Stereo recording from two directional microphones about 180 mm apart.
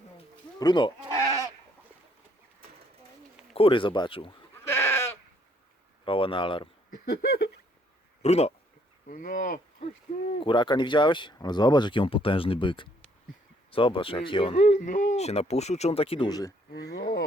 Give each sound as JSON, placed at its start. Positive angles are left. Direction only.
{"t": 0.6, "sound": "speech", "side_deg": 25}
{"t": 3.5, "sound": "speech", "side_deg": 30}
{"t": 4.6, "sound": "goat", "side_deg": 15}
{"t": 6.1, "sound": "speech", "side_deg": 30}
{"t": 7.0, "sound": "a sound", "side_deg": 60}
{"t": 8.2, "sound": "speech", "side_deg": 35}
{"t": 9.0, "sound": "speech", "side_deg": 50}
{"t": 9.8, "sound": "speech", "side_deg": 30}